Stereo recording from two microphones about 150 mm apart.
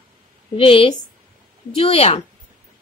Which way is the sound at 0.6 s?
35° left (ahead or behind).